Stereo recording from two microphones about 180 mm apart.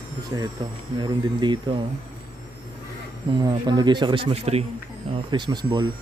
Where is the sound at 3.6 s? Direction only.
25° right (ahead or behind).